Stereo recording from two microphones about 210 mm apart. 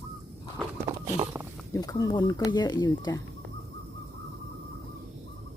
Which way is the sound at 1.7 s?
20° left (ahead or behind).